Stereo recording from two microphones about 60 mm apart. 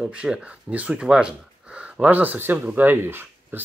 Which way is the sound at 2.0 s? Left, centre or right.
Right.